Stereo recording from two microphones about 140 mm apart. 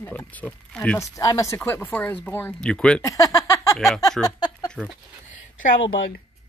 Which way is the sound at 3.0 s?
25° left (ahead or behind).